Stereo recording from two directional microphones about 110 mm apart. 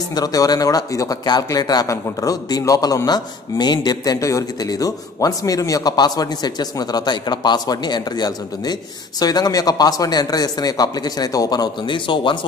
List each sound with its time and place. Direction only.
0.1 s speech: 35° left (ahead or behind)